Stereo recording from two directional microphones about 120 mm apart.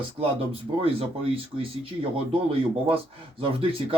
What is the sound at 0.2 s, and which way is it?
Speech, 50° right (ahead or behind).